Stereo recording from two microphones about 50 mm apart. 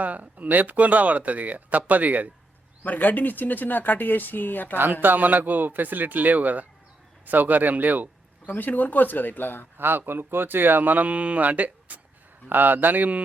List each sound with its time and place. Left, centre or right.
0.0 s speech: right
2.8 s speech: left
4.8 s speech: right
8.4 s speech: left
9.7 s speech: right